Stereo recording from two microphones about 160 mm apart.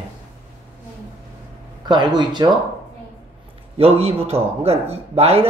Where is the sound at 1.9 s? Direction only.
25° right (ahead or behind).